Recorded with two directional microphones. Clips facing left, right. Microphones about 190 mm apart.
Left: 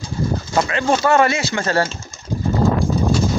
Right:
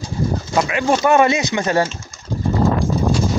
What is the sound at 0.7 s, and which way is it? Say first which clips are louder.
Speech: right 2 dB; 10° right (ahead or behind).